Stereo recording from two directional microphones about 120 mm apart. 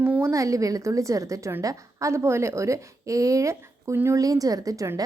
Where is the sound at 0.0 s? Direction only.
20° right (ahead or behind).